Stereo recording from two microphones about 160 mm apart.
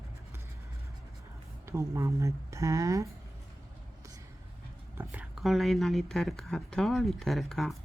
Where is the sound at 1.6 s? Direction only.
15° right (ahead or behind).